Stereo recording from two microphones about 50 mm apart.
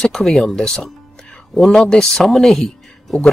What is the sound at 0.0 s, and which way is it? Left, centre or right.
Speech, centre.